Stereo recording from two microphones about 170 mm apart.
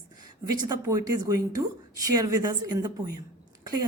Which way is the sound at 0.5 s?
20° right (ahead or behind).